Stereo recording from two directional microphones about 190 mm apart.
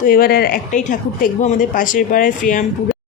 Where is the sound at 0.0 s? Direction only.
50° left (ahead or behind).